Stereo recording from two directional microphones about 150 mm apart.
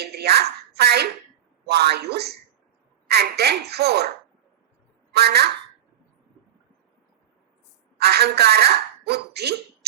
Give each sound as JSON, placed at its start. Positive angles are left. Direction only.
{"t": 0.0, "sound": "a sound", "side_deg": -90}
{"t": 1.6, "sound": "speech", "side_deg": -90}
{"t": 5.1, "sound": "speech", "side_deg": -90}
{"t": 7.9, "sound": "speech", "side_deg": -90}